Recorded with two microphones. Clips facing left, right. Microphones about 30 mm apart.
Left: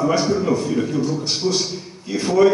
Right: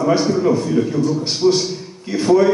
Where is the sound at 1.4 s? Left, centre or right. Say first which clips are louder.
Right 8 dB; right.